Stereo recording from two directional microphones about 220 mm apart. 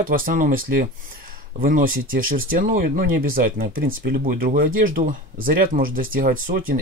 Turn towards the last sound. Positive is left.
turn(degrees=-40)  # may be behind; listen again after turning